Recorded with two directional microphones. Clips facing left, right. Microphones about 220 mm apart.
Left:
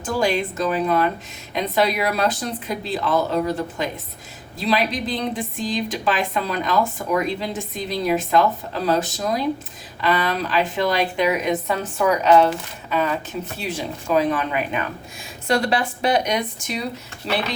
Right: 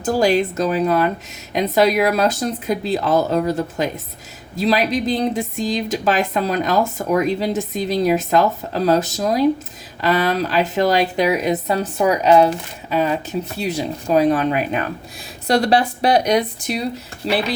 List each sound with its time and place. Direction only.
0.0 s speech: 40° right (ahead or behind)
13.6 s speech: 40° right (ahead or behind)